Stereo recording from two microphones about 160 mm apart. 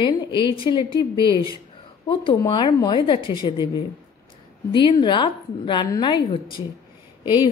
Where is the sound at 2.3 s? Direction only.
30° left (ahead or behind).